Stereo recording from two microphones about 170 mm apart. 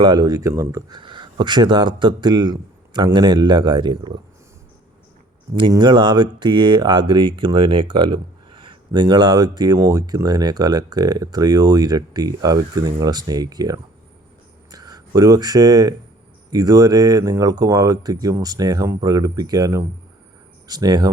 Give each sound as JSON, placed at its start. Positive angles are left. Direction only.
{"t": 0.0, "sound": "speech", "side_deg": -25}
{"t": 5.7, "sound": "speech", "side_deg": -25}